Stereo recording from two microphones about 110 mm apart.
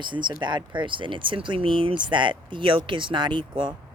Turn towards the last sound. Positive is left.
turn(degrees=-45)  # may be behind; listen again after turning